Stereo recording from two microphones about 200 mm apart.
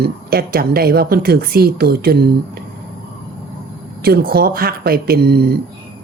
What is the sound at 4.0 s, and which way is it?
A woman's voice, 50° right (ahead or behind).